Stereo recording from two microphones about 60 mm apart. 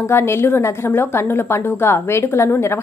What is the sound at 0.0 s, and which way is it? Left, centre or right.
A woman's voice, left.